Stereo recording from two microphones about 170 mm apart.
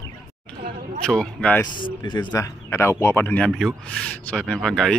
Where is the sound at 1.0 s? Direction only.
5° left (ahead or behind).